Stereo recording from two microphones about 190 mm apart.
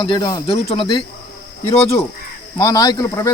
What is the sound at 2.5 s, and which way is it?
Speech, 20° left (ahead or behind).